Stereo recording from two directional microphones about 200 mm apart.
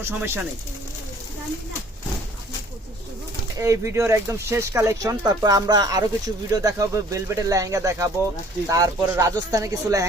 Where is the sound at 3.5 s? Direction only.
15° right (ahead or behind).